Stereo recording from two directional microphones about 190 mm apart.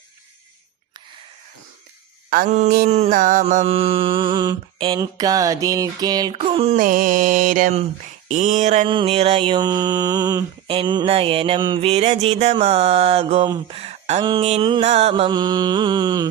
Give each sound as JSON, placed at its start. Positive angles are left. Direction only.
{"t": 2.3, "sound": "music", "side_deg": -55}
{"t": 2.6, "sound": "mantra", "side_deg": -40}
{"t": 6.4, "sound": "mantra", "side_deg": -30}
{"t": 6.7, "sound": "music", "side_deg": -45}
{"t": 8.3, "sound": "mantra", "side_deg": -40}